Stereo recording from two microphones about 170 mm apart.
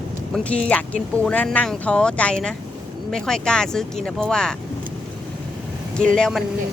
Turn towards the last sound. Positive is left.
turn(degrees=5)  # may be behind; listen again after turning